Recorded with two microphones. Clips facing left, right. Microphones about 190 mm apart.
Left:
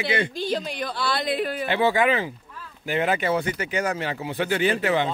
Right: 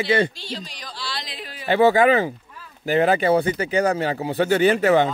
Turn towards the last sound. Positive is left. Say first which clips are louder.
# right 6 dB
turn(degrees=-40)  # may be behind; listen again after turning